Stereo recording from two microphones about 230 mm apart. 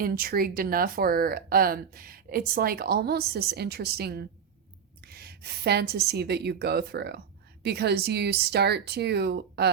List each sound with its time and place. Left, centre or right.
0.0 s a woman's voice: right